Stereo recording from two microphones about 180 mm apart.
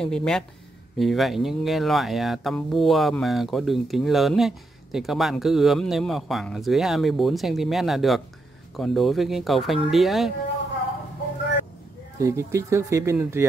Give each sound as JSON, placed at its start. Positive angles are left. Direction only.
{"t": 0.0, "sound": "speech", "side_deg": 5}
{"t": 12.2, "sound": "speech", "side_deg": -15}